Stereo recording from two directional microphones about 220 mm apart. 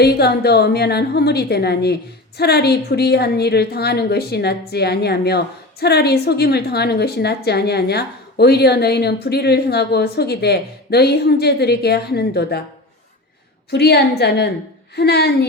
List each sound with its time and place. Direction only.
0.0 s speech: 45° left (ahead or behind)
13.7 s speech: 45° left (ahead or behind)